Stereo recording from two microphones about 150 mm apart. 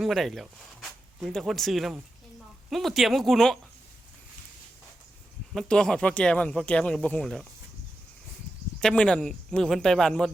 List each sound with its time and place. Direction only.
0.0 s speech: centre (ahead or behind)
5.5 s speech: 5° left (ahead or behind)
8.8 s speech: 5° left (ahead or behind)